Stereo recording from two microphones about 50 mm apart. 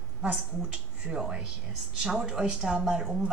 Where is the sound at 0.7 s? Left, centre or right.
Centre.